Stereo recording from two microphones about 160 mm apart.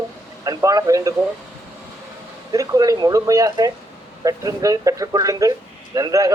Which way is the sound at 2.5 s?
20° right (ahead or behind).